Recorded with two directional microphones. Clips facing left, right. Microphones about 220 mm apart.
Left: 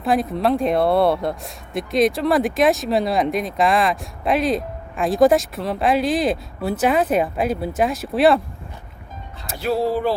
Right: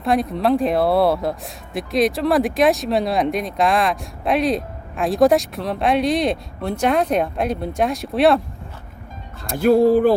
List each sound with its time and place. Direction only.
0.0 s speech: centre (ahead or behind)
9.6 s speech: 50° right (ahead or behind)